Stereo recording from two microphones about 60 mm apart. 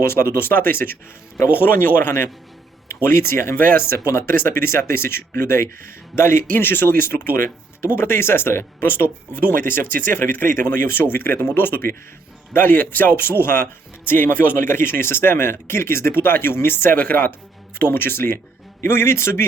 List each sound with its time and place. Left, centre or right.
0.0 s speech: left
3.5 s speech: left
3.8 s a man's voice: left